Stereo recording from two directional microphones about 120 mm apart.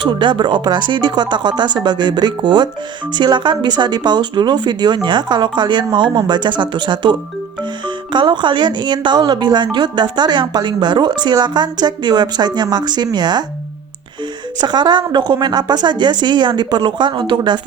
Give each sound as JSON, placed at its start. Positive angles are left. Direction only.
{"t": 0.0, "sound": "speech", "side_deg": -40}
{"t": 14.6, "sound": "speech", "side_deg": -35}